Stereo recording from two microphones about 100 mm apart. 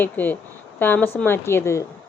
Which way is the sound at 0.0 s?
20° left (ahead or behind).